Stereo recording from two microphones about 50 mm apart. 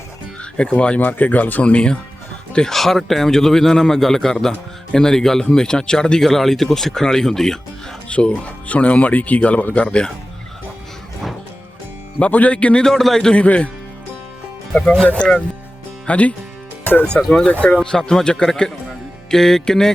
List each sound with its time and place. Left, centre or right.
0.5 s speech: left
0.9 s speech: left
1.7 s speech: centre
2.7 s a man's voice: centre
8.0 s speech: left
12.2 s speech: left
12.8 s a man's voice: centre
13.3 s speech: left
14.7 s speech: centre
17.7 s a man's voice: centre